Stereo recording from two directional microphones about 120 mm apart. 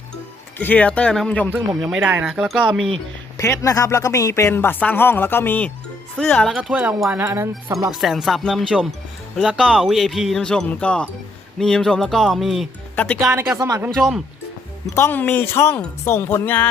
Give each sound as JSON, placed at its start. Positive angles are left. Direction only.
{"t": 0.6, "sound": "speech", "side_deg": 15}
{"t": 1.9, "sound": "speech", "side_deg": -15}
{"t": 3.3, "sound": "speech", "side_deg": 25}
{"t": 6.6, "sound": "speech", "side_deg": -10}
{"t": 7.9, "sound": "speech", "side_deg": 0}
{"t": 13.6, "sound": "speech", "side_deg": -25}
{"t": 13.9, "sound": "speech", "side_deg": 5}
{"t": 14.9, "sound": "speech", "side_deg": 20}